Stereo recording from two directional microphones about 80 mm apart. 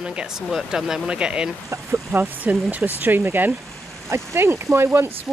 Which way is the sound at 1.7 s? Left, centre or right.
Right.